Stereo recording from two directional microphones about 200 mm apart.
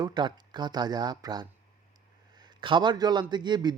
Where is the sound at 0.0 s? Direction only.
20° right (ahead or behind).